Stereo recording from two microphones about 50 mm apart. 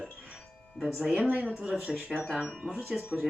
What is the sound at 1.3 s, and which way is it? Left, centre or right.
Speech, right.